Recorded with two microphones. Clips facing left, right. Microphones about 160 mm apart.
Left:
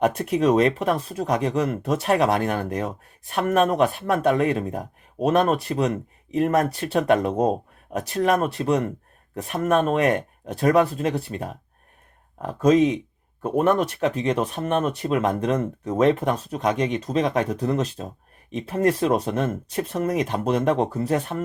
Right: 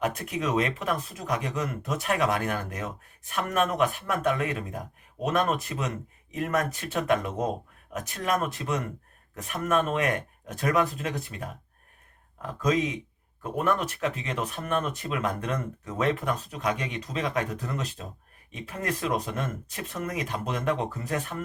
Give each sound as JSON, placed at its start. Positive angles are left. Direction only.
{"t": 0.0, "sound": "speech", "side_deg": 35}
{"t": 12.5, "sound": "speech", "side_deg": 40}
{"t": 14.4, "sound": "speech", "side_deg": 30}
{"t": 14.8, "sound": "speech", "side_deg": 40}